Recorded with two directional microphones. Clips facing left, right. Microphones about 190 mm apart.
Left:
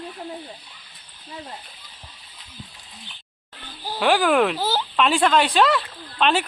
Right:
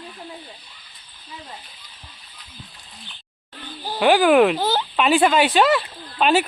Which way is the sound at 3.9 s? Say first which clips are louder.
Right 4 dB; 5° right (ahead or behind).